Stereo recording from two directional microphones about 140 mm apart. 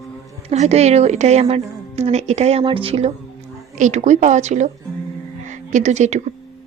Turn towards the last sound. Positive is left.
turn(degrees=-55)  # may be behind; listen again after turning